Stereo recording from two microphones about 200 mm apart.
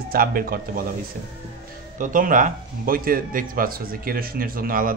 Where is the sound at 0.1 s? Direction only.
45° right (ahead or behind).